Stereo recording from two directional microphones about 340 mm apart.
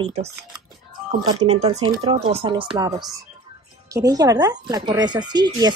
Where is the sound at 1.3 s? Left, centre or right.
Centre.